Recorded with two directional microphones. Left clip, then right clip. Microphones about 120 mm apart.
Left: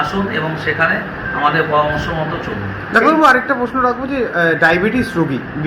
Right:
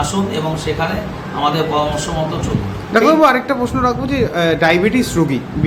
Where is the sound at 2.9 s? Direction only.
30° right (ahead or behind).